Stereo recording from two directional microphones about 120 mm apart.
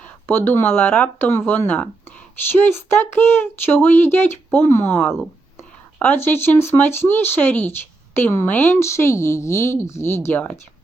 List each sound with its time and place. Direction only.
0.3 s speech: 20° left (ahead or behind)
5.0 s speech: centre (ahead or behind)
6.0 s speech: 15° left (ahead or behind)